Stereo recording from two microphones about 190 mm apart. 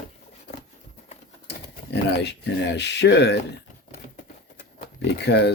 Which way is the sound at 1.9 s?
60° left (ahead or behind).